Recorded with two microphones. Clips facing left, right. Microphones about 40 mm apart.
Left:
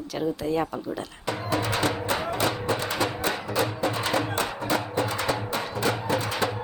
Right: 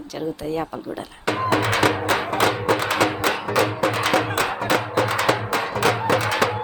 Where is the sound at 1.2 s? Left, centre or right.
Right.